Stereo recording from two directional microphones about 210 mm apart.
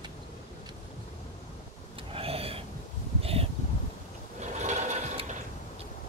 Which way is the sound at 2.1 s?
25° right (ahead or behind).